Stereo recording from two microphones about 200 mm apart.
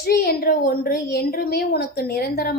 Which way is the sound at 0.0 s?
50° left (ahead or behind).